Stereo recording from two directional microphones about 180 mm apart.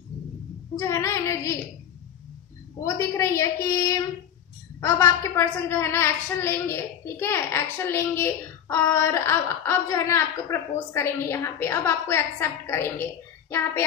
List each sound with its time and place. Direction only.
0.7 s a woman's voice: 15° left (ahead or behind)
2.8 s a woman's voice: 15° left (ahead or behind)
4.7 s a woman's voice: 15° left (ahead or behind)